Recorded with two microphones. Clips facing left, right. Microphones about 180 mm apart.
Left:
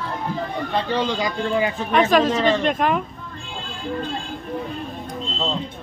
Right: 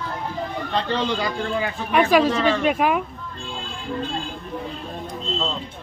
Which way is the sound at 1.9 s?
10° right (ahead or behind).